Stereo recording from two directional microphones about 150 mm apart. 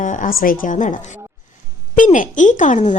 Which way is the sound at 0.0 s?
55° left (ahead or behind).